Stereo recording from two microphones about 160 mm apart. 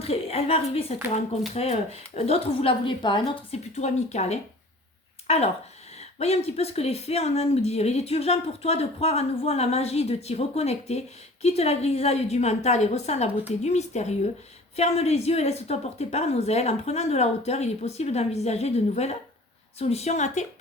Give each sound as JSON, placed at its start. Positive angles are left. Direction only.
{"t": 0.0, "sound": "speech", "side_deg": 40}
{"t": 3.8, "sound": "a woman's voice", "side_deg": 45}